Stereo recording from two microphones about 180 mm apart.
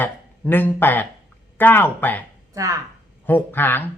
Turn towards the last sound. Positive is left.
turn(degrees=10)  # may be behind; listen again after turning